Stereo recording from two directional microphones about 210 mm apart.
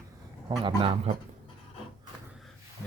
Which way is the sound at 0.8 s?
25° right (ahead or behind).